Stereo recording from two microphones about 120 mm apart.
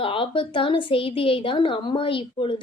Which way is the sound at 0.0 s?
45° left (ahead or behind).